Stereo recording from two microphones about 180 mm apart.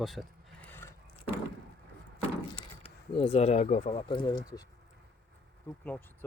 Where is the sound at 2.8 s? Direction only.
30° left (ahead or behind).